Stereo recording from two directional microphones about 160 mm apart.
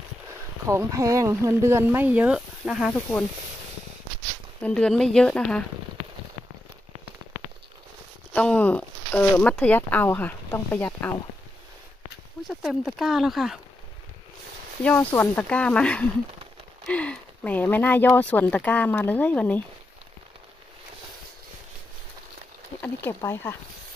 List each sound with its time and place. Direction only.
0.7 s speech: 20° right (ahead or behind); by 2.9 s 5° right (ahead or behind)
2.9 s speech: 10° left (ahead or behind)
4.6 s speech: 5° left (ahead or behind)
8.3 s speech: 10° left (ahead or behind)
12.4 s speech: centre (ahead or behind)
14.8 s speech: 10° left (ahead or behind)
22.8 s speech: 15° left (ahead or behind)